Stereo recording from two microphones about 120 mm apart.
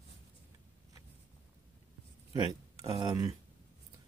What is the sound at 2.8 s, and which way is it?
Speech, 30° right (ahead or behind).